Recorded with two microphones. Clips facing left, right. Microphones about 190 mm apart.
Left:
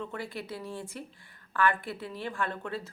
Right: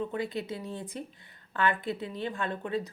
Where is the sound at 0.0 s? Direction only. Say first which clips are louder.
Right 5 dB; 20° right (ahead or behind).